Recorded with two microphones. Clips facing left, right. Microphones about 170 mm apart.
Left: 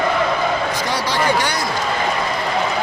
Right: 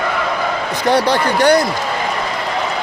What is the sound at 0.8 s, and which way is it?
Speech, 55° right (ahead or behind).